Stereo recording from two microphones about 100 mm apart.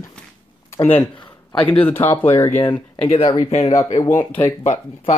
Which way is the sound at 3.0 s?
90° left.